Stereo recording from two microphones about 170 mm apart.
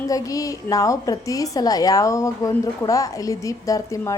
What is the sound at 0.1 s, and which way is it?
A woman's voice, 20° left (ahead or behind).